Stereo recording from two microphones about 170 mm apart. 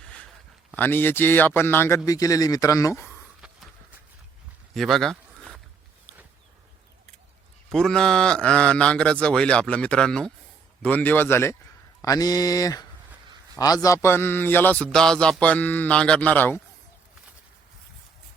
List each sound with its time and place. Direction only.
0.8 s speech: 10° left (ahead or behind)
4.7 s a sound: centre (ahead or behind)
7.7 s speech: 5° left (ahead or behind)